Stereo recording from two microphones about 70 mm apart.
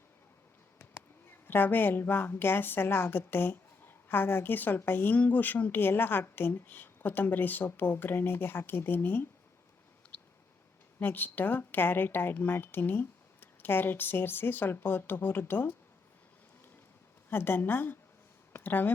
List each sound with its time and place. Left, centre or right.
1.5 s a woman's voice: left
11.0 s a woman's voice: left
17.2 s a woman's voice: left
18.5 s a sound: left